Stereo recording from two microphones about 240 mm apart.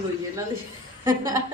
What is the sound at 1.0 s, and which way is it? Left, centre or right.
Speech, centre.